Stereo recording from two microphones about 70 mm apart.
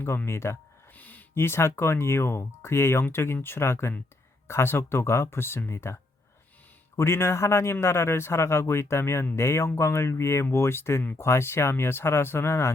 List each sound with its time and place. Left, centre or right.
0.3 s speech: left
0.9 s speech: left